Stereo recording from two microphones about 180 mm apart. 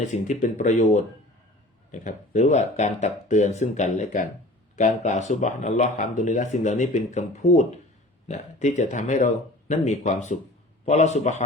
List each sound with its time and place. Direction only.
0.0 s speech: 40° left (ahead or behind)